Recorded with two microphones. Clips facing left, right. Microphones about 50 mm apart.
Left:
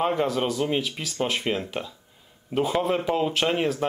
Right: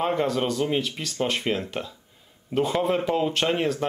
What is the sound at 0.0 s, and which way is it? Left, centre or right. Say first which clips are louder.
A man's voice: even; centre.